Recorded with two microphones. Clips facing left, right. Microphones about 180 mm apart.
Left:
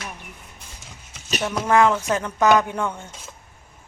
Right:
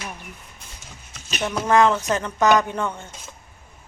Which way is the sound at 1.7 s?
10° left (ahead or behind).